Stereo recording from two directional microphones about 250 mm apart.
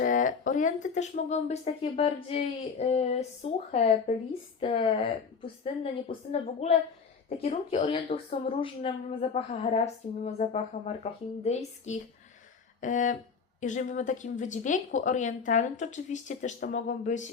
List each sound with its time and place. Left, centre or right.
0.0 s speech: left
12.8 s a sound: left
13.6 s speech: left